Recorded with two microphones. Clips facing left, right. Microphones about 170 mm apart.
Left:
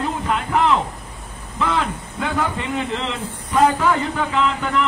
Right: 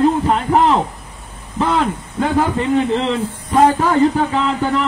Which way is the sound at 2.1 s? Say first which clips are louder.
Right 7 dB; 35° right (ahead or behind).